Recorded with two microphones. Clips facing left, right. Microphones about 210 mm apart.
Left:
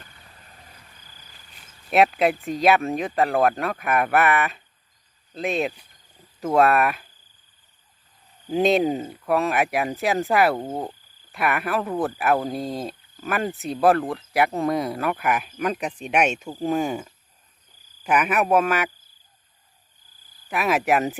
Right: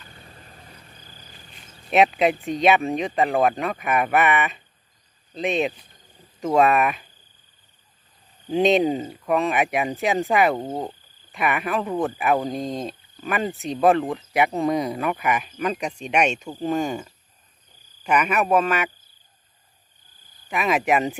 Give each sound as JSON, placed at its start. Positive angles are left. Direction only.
{"t": 0.1, "sound": "vehicle", "side_deg": -30}
{"t": 1.9, "sound": "speech", "side_deg": 0}
{"t": 8.4, "sound": "speech", "side_deg": 0}
{"t": 20.5, "sound": "speech", "side_deg": 5}